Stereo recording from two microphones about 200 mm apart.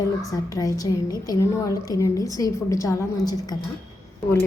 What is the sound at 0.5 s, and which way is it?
A woman's voice, 15° left (ahead or behind).